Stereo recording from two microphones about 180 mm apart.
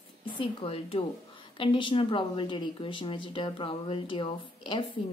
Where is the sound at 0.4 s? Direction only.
30° left (ahead or behind).